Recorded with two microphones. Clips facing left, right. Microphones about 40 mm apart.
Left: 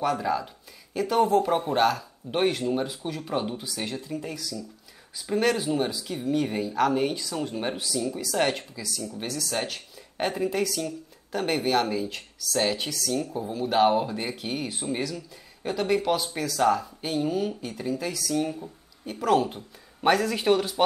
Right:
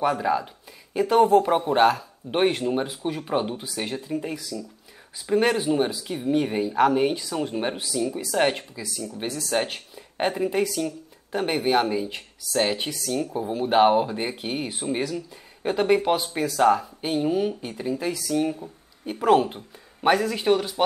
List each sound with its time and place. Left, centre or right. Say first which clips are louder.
0.0 s speech: right 3 dB; centre
20.0 s speech: right 1 dB; centre